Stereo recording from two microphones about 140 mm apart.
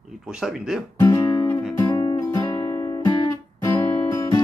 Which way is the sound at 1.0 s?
20° left (ahead or behind).